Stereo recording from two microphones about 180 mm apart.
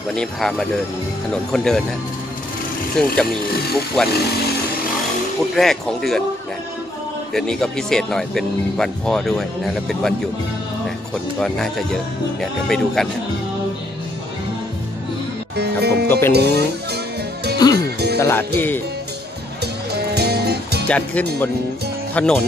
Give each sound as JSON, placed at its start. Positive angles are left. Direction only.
{"t": 0.1, "sound": "speech", "side_deg": 5}
{"t": 3.0, "sound": "speech", "side_deg": 5}
{"t": 5.6, "sound": "speech", "side_deg": 0}
{"t": 7.3, "sound": "speech", "side_deg": 5}
{"t": 11.3, "sound": "speech", "side_deg": 0}
{"t": 15.5, "sound": "music", "side_deg": -65}
{"t": 16.1, "sound": "speech", "side_deg": 15}
{"t": 16.3, "sound": "speech", "side_deg": -65}
{"t": 17.6, "sound": "music", "side_deg": 20}
{"t": 17.9, "sound": "music", "side_deg": -65}
{"t": 18.2, "sound": "speech", "side_deg": 10}
{"t": 19.6, "sound": "music", "side_deg": -65}
{"t": 20.9, "sound": "speech", "side_deg": 10}